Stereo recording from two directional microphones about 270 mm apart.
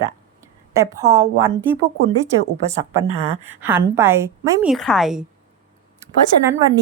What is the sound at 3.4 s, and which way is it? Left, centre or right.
A woman's voice, centre.